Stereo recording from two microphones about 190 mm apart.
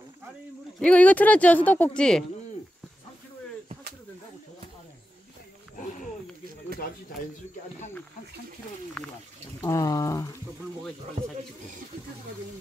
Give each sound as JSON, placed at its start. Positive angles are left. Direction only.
{"t": 0.7, "sound": "speech", "side_deg": 5}
{"t": 9.0, "sound": "speech", "side_deg": 5}
{"t": 9.6, "sound": "speech", "side_deg": 15}